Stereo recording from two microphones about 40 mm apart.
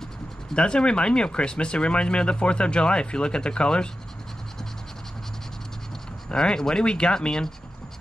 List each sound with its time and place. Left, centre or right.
0.6 s speech: left
6.2 s speech: centre